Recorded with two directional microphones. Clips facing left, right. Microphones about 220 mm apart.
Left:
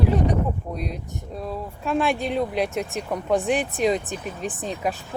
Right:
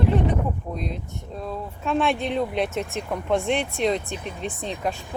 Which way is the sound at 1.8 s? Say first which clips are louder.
Even; centre (ahead or behind).